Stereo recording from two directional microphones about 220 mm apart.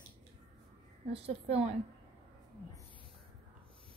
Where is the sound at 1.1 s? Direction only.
25° right (ahead or behind).